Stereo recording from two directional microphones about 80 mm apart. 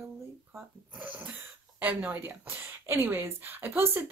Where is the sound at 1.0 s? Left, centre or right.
Centre.